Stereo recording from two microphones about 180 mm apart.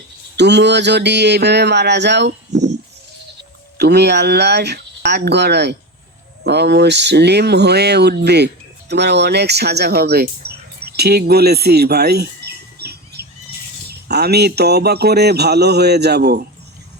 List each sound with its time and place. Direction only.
0.3 s speech: 70° right (ahead or behind)
3.8 s speech: 65° right (ahead or behind)
10.8 s bird: 65° right (ahead or behind)
14.1 s speech: 65° right (ahead or behind)